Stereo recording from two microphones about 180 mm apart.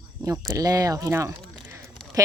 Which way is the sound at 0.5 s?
20° right (ahead or behind).